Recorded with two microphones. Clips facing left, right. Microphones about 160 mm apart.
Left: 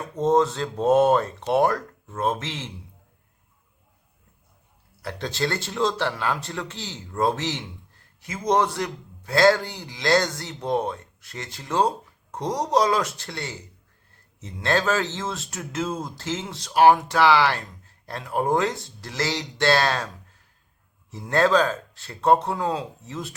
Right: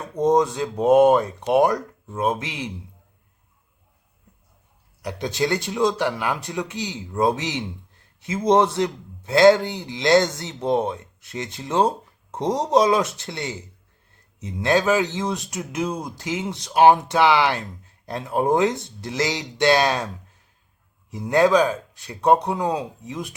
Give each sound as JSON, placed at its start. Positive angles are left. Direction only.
{"t": 0.2, "sound": "speech", "side_deg": -15}
{"t": 5.0, "sound": "a man's voice", "side_deg": -15}